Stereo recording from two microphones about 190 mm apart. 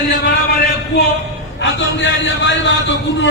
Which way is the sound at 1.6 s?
75° left (ahead or behind).